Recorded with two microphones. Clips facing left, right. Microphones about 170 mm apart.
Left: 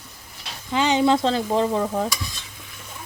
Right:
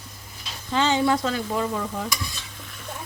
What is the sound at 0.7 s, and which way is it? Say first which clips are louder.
Speech: left 2 dB; 15° left (ahead or behind).